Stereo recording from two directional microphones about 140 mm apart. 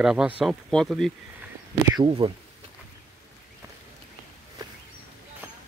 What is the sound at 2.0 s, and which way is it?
Speech, 40° right (ahead or behind).